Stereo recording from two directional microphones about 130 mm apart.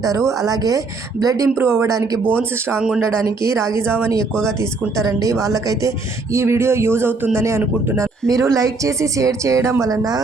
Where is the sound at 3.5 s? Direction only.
25° right (ahead or behind).